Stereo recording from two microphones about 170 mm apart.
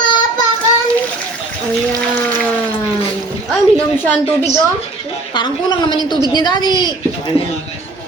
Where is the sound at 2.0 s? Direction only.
5° left (ahead or behind).